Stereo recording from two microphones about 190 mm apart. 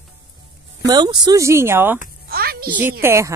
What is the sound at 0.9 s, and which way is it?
Speech, 20° right (ahead or behind).